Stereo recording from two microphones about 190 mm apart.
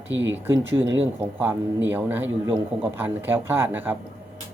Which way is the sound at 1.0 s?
10° right (ahead or behind).